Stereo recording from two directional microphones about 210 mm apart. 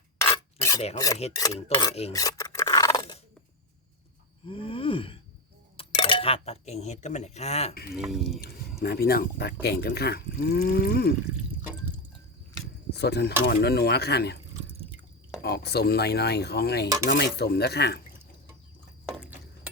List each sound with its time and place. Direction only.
0.2 s filing: 15° left (ahead or behind)
1.5 s filing: 25° left (ahead or behind)
2.1 s scissors: 15° left (ahead or behind)
4.4 s gasp: 25° left (ahead or behind)
5.7 s speech: 25° left (ahead or behind)
7.9 s speech: centre (ahead or behind)
8.8 s speech: 50° left (ahead or behind)
12.9 s speech: 50° left (ahead or behind)
15.4 s speech: 50° left (ahead or behind)
19.1 s stir: 5° right (ahead or behind)